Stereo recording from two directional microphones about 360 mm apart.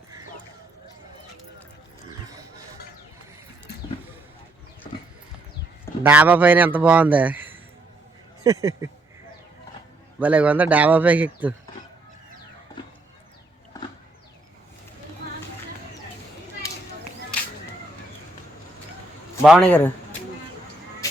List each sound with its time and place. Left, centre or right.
6.0 s speech: centre
10.2 s speech: centre
15.2 s a sound: right
19.4 s speech: centre